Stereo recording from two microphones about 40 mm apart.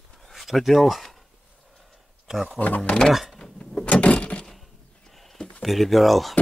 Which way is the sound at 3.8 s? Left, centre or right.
Left.